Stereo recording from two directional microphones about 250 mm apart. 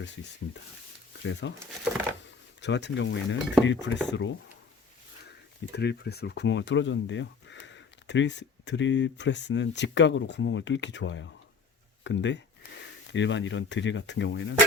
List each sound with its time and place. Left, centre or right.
0.0 s speech: left
5.7 s speech: left